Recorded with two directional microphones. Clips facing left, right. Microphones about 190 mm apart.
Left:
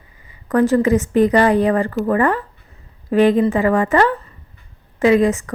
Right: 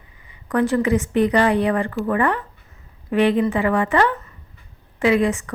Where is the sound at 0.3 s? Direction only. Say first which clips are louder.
Left 4 dB; 40° left (ahead or behind).